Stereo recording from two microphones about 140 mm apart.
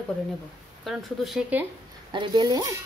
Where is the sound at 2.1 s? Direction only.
30° right (ahead or behind).